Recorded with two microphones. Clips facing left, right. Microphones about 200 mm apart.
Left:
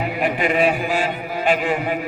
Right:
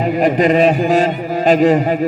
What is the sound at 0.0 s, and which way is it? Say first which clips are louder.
A man's voice: right 8 dB; 40° right (ahead or behind).